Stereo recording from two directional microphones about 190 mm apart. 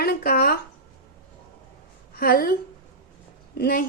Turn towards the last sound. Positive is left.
turn(degrees=55)  # may be behind; listen again after turning